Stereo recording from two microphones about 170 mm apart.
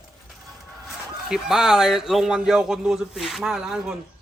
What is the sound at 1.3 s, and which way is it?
A man's voice, 5° right (ahead or behind).